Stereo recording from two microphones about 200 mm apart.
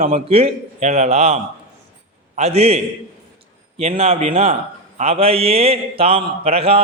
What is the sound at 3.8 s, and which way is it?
A man's voice, 30° right (ahead or behind).